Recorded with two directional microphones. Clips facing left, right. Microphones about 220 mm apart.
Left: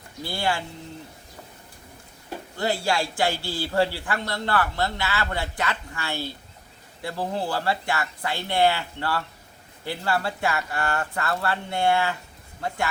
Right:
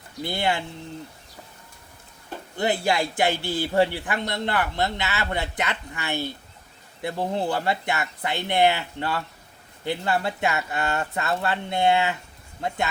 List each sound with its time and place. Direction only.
0.2 s a man's voice: 20° right (ahead or behind)
2.6 s a man's voice: 20° right (ahead or behind)